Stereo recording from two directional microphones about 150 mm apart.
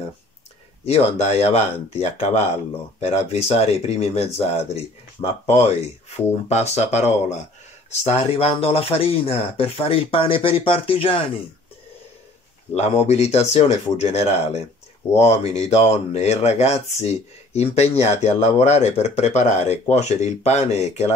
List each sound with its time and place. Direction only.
0.8 s speech: 45° left (ahead or behind)
12.7 s speech: 45° left (ahead or behind)